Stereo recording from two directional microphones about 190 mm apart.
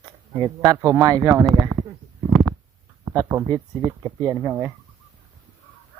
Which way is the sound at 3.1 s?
20° right (ahead or behind).